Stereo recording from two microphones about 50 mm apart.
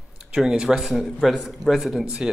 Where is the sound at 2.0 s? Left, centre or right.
Centre.